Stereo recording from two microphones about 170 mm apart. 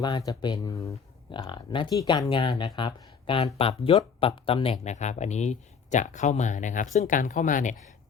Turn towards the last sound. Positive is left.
turn(degrees=50)  # may be behind; listen again after turning